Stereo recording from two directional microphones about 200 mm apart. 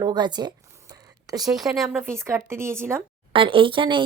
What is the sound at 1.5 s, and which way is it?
Speech, centre (ahead or behind).